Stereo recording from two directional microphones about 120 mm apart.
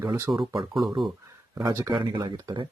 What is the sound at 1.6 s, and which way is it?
Speech, 25° right (ahead or behind).